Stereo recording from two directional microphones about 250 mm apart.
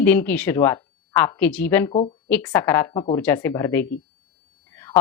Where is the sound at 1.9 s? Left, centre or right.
Left.